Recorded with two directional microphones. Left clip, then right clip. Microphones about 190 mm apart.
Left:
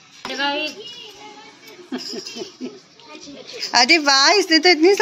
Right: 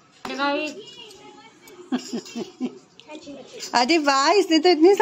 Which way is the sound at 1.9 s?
70° right (ahead or behind).